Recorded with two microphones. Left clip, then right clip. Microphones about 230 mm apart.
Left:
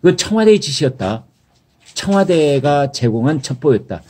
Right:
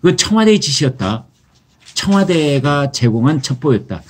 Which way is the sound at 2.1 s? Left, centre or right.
Centre.